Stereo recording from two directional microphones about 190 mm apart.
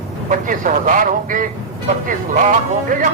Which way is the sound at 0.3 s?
45° right (ahead or behind).